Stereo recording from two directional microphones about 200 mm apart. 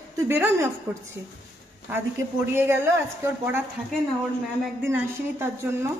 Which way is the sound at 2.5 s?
10° right (ahead or behind).